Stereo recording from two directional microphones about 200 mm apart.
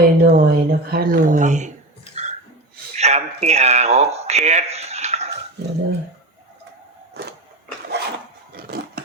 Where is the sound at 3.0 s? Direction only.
35° right (ahead or behind).